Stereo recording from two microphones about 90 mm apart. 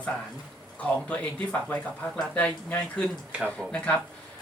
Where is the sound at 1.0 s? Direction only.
15° left (ahead or behind).